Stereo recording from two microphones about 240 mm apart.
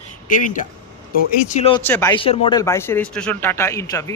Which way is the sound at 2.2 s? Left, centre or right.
Left.